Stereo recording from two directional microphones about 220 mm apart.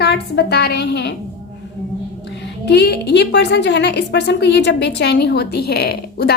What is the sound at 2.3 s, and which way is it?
A woman's voice, 50° left (ahead or behind).